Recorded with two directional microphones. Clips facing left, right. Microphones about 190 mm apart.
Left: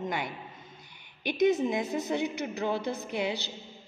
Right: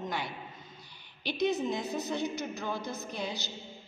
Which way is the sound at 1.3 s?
45° left (ahead or behind).